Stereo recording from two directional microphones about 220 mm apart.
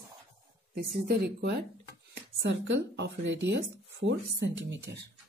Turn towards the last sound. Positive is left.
turn(degrees=-55)  # may be behind; listen again after turning